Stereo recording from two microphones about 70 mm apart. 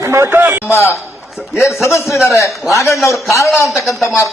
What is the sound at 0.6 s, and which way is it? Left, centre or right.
A man's voice, left.